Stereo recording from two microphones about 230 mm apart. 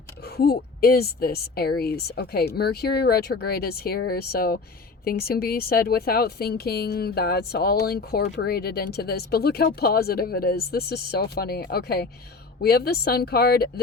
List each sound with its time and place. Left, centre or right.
0.3 s a woman's voice: left